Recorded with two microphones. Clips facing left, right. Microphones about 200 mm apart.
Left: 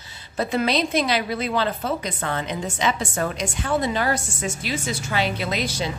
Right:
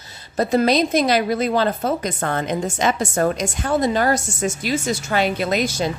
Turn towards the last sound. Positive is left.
turn(degrees=-45)  # may be behind; listen again after turning